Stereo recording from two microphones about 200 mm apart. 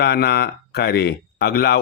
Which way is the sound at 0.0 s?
55° left (ahead or behind).